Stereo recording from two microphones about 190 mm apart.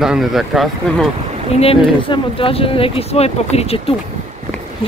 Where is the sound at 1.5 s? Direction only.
30° left (ahead or behind).